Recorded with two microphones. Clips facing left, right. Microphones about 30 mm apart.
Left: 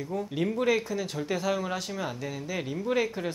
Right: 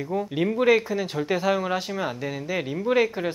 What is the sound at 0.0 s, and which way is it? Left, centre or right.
Speech, right.